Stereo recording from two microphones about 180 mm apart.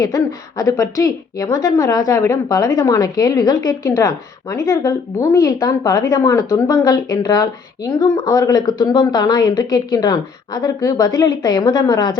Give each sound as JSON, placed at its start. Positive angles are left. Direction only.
{"t": 0.0, "sound": "a woman's voice", "side_deg": 20}